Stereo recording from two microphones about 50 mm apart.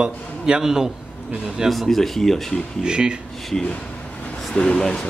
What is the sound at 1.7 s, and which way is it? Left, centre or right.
Speech, centre.